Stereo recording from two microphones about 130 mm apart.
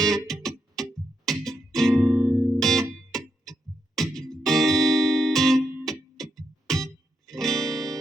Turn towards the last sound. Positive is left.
turn(degrees=0)  # may be behind; listen again after turning